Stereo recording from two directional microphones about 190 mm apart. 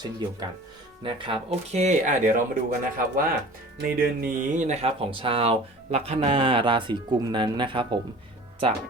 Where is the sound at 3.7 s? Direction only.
50° right (ahead or behind).